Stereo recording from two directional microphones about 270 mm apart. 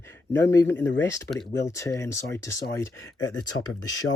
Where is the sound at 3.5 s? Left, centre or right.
Left.